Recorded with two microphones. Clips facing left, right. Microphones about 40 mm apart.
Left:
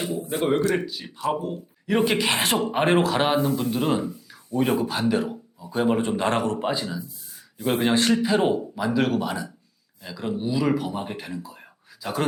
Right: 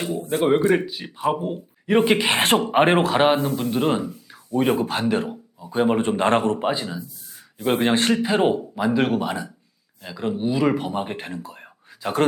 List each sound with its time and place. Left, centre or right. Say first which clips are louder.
0.8 s speech: right 2 dB; centre
2.4 s a man's voice: right 4 dB; right
2.7 s speech: right 2 dB; right
4.3 s a sound: right 3 dB; right
4.9 s a man's voice: right 1 dB; right
5.3 s a sound: right 2 dB; centre
6.0 s a man's voice: right 4 dB; right
6.6 s speech: right 2 dB; centre
7.9 s a man's voice: right 1 dB; right
8.2 s speech: right 2 dB; centre